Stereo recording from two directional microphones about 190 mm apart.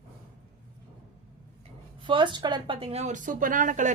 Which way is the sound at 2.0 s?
25° right (ahead or behind).